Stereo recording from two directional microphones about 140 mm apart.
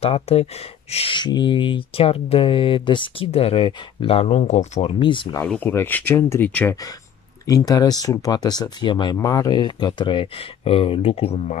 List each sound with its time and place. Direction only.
0.0 s speech: 45° left (ahead or behind)
4.9 s speech: 35° left (ahead or behind)
5.5 s speech: 15° left (ahead or behind)
7.4 s speech: 25° left (ahead or behind); by 11.5 s 45° left (ahead or behind)